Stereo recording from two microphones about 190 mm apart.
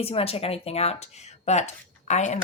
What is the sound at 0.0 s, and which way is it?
Speech, 30° left (ahead or behind).